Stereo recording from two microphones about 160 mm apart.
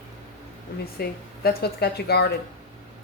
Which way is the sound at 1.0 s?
85° left.